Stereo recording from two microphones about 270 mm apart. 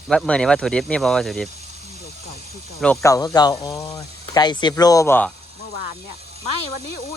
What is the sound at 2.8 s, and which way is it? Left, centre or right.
Speech, centre.